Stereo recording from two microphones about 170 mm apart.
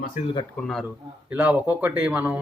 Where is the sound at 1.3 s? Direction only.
10° right (ahead or behind).